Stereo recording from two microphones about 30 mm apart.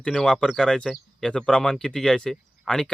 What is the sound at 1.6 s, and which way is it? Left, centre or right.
Speech, centre.